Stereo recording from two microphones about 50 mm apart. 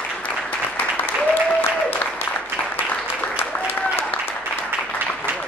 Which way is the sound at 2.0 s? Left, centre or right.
Left.